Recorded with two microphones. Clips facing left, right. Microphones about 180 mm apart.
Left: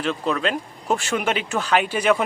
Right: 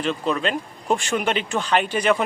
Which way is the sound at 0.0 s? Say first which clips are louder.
Even; centre (ahead or behind).